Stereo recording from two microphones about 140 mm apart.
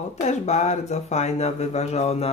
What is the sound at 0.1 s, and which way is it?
Speech, 55° left (ahead or behind).